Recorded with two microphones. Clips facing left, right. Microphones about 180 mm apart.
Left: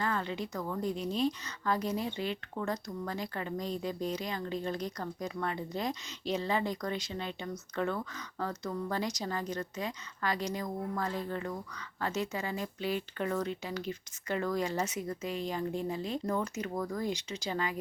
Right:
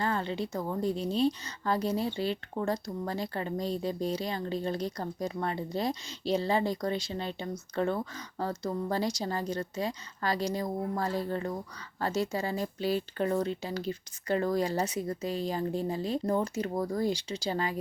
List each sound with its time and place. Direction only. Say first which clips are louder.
0.0 s a woman's voice: right 3 dB; 30° right (ahead or behind)